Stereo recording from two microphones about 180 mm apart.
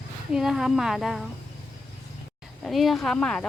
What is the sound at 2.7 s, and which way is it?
Speech, centre (ahead or behind).